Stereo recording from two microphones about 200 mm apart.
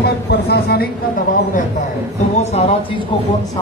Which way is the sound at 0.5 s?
50° left (ahead or behind).